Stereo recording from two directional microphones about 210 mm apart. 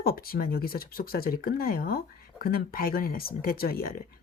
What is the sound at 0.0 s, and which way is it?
Speech, 45° left (ahead or behind).